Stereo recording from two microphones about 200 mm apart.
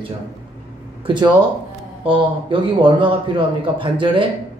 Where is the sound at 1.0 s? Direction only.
25° right (ahead or behind).